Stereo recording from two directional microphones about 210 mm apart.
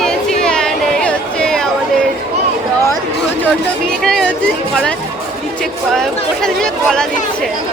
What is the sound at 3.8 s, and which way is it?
Speech, 5° left (ahead or behind).